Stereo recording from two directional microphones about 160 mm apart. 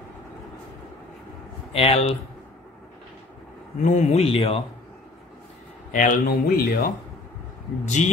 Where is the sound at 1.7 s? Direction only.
35° left (ahead or behind).